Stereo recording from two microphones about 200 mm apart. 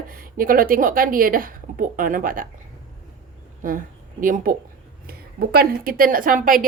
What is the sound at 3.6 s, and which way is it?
Speech, 45° right (ahead or behind).